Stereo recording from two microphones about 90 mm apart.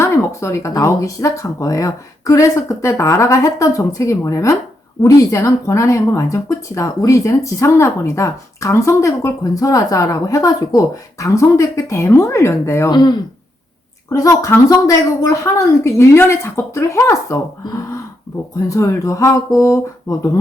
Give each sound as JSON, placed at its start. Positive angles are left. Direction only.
{"t": 0.0, "sound": "speech", "side_deg": 30}
{"t": 12.9, "sound": "speech", "side_deg": 50}
{"t": 14.1, "sound": "speech", "side_deg": 35}